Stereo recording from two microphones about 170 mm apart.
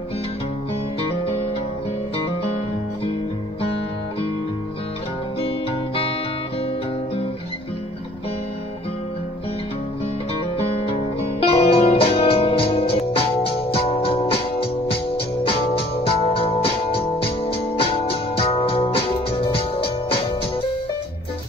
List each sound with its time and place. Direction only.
10.6 s music: 35° left (ahead or behind)